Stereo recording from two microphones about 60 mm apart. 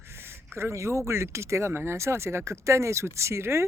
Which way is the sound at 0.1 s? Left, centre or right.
Right.